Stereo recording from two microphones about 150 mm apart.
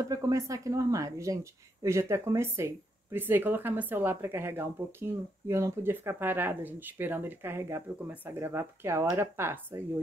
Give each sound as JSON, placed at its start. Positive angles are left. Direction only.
{"t": 0.0, "sound": "speech", "side_deg": -20}